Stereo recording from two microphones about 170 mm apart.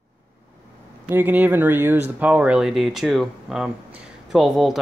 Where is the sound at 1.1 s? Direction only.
10° right (ahead or behind).